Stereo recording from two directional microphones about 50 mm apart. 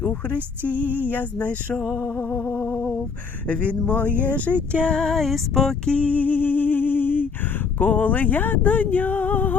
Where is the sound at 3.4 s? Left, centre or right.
Left.